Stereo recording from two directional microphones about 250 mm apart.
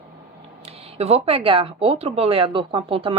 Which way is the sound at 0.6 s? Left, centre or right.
Right.